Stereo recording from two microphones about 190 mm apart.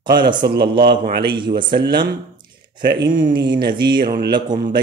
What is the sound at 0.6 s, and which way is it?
Speech, 55° right (ahead or behind).